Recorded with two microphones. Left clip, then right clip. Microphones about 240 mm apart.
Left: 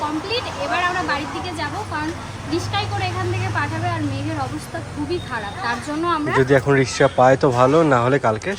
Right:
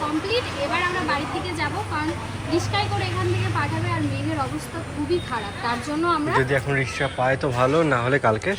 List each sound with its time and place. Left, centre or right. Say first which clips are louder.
0.3 s a sound: left 1 dB; centre
5.3 s speech: left 2 dB; centre
6.5 s speech: left 7 dB; left